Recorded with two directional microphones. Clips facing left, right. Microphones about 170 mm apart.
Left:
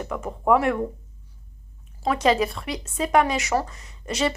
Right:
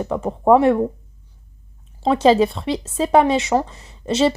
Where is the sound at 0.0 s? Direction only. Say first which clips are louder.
Right 7 dB; 30° right (ahead or behind).